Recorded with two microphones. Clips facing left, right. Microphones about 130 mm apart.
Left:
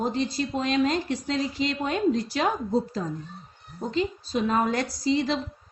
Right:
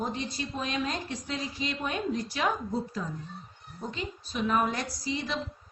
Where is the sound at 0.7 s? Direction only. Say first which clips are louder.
Left 11 dB; 90° left.